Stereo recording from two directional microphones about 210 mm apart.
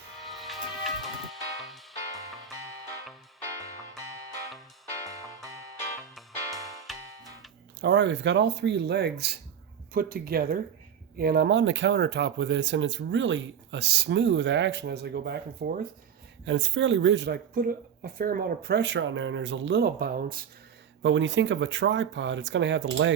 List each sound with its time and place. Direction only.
0.3 s music: centre (ahead or behind)
6.9 s music: centre (ahead or behind)
7.8 s speech: 55° right (ahead or behind)
16.5 s speech: 60° right (ahead or behind); by 20.4 s 45° right (ahead or behind)
21.0 s speech: 60° right (ahead or behind)